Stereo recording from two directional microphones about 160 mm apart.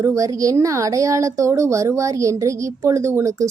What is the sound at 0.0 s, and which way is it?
A child's voice, 20° right (ahead or behind).